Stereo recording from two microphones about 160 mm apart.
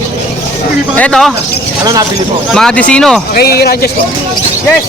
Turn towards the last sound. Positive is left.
turn(degrees=75)  # may be behind; listen again after turning